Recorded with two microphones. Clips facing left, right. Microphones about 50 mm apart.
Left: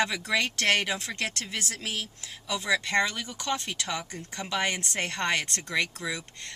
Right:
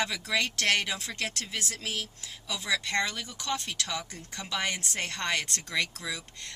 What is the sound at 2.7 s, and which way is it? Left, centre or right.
Speech, left.